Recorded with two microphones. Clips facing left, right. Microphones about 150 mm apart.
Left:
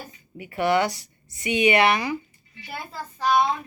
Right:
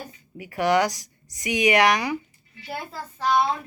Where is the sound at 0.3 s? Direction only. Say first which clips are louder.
Right 1 dB; 10° right (ahead or behind).